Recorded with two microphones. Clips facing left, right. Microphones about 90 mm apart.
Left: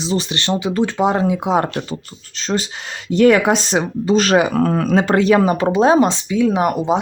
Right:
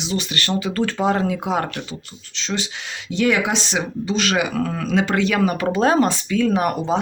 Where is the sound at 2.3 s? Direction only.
40° left (ahead or behind).